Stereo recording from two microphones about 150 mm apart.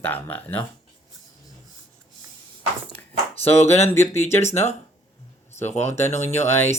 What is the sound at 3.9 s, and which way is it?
Speech, 15° left (ahead or behind).